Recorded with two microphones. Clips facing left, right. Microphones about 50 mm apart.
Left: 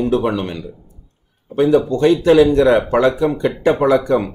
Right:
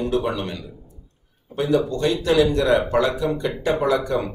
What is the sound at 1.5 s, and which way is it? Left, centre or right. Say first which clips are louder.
Speech: left 7 dB; left.